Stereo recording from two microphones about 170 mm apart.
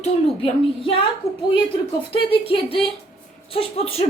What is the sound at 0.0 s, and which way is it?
A woman's voice, 35° left (ahead or behind).